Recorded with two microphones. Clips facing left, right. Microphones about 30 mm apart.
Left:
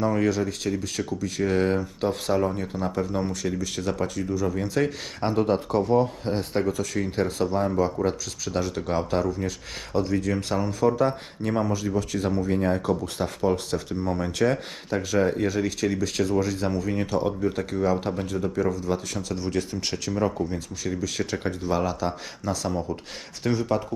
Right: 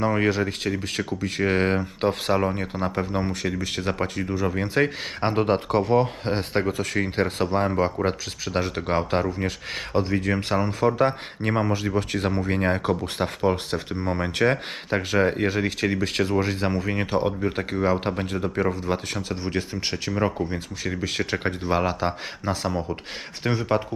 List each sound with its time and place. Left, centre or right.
0.0 s speech: right
7.9 s speech: right